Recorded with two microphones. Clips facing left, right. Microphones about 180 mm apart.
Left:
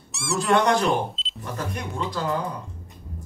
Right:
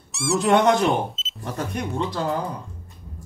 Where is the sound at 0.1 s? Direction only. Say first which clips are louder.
Right 5 dB; centre (ahead or behind).